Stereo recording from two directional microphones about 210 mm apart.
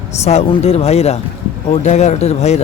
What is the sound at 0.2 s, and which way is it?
Speech, 30° left (ahead or behind).